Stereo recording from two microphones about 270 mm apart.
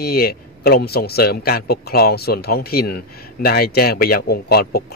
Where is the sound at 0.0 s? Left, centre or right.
Left.